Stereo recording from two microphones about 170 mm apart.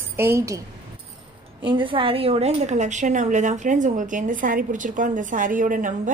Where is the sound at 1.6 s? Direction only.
30° right (ahead or behind).